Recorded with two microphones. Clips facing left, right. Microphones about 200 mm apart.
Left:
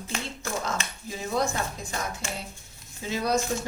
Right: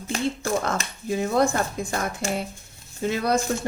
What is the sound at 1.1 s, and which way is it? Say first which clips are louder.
Speech: right 7 dB; 60° right (ahead or behind).